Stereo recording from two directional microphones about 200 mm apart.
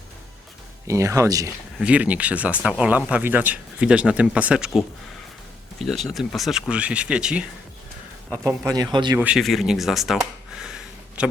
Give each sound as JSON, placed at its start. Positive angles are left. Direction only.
{"t": 0.9, "sound": "speech", "side_deg": -15}
{"t": 5.8, "sound": "speech", "side_deg": 0}
{"t": 8.3, "sound": "speech", "side_deg": -15}
{"t": 9.1, "sound": "speech", "side_deg": -5}
{"t": 10.6, "sound": "a sound", "side_deg": -5}